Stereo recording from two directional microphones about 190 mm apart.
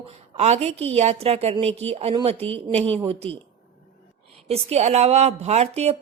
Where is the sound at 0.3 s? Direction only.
35° right (ahead or behind).